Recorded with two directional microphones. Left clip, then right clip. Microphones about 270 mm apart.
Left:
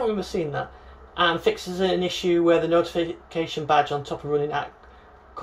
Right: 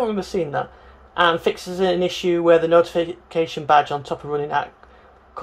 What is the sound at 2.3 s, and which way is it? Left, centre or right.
Speech, centre.